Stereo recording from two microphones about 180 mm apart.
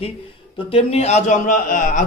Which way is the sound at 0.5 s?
30° left (ahead or behind).